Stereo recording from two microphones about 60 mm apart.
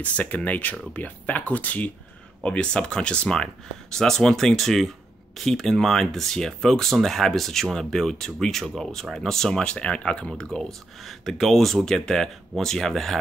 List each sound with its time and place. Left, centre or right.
0.0 s speech: left
2.4 s speech: centre